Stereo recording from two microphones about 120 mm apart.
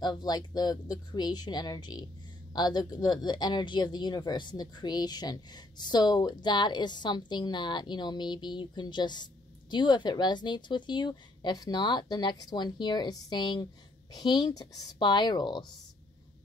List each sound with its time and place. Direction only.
0.0 s speech: 35° left (ahead or behind)